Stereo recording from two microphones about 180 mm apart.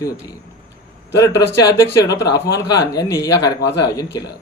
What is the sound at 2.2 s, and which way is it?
Speech, 20° left (ahead or behind).